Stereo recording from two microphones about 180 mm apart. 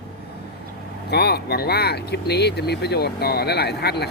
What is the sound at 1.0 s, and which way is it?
A man's voice, 65° left (ahead or behind).